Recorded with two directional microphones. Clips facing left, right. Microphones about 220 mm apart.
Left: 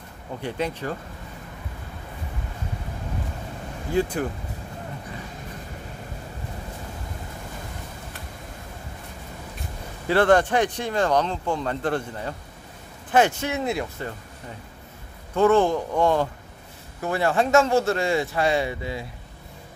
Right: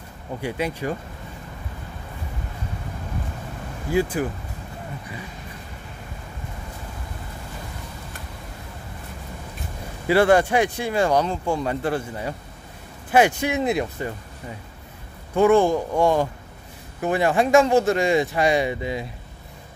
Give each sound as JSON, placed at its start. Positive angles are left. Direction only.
{"t": 0.4, "sound": "speech", "side_deg": -10}
{"t": 3.9, "sound": "speech", "side_deg": -5}
{"t": 10.0, "sound": "speech", "side_deg": -10}
{"t": 15.3, "sound": "speech", "side_deg": -15}